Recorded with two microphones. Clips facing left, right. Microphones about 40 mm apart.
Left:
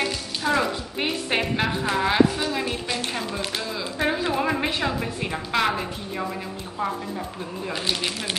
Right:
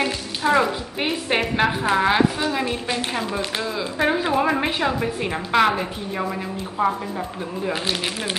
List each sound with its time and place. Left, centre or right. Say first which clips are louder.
0.0 s speech: right 3 dB; centre
6.8 s a woman's voice: right 6 dB; right
7.7 s speech: left 1 dB; centre